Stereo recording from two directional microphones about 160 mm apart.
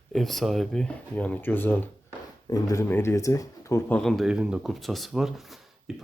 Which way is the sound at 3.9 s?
Centre (ahead or behind).